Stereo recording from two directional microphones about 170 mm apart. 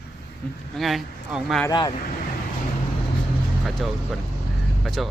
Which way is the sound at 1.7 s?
25° left (ahead or behind).